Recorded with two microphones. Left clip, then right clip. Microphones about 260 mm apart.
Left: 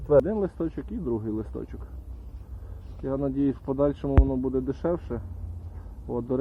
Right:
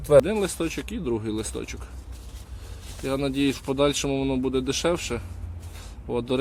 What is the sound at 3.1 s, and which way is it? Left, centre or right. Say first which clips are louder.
Speech: right 2 dB; right.